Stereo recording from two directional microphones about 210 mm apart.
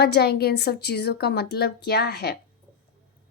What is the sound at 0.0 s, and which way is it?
A woman's voice, 50° left (ahead or behind).